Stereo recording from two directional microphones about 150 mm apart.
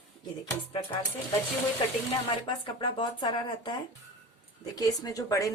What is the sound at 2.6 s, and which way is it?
Speech, 30° left (ahead or behind).